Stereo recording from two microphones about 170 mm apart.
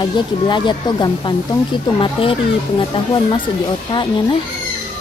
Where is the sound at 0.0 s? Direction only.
25° left (ahead or behind).